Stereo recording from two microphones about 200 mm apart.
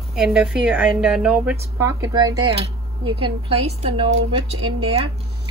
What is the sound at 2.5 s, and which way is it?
Speech, 30° right (ahead or behind).